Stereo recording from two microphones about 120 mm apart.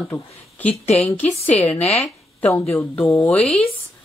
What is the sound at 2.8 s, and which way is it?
Speech, 15° left (ahead or behind).